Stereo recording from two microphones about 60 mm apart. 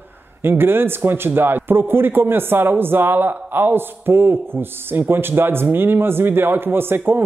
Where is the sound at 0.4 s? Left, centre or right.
Right.